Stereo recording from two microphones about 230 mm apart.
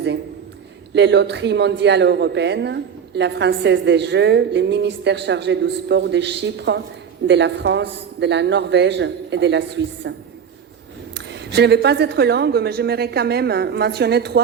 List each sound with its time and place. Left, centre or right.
0.9 s speech: right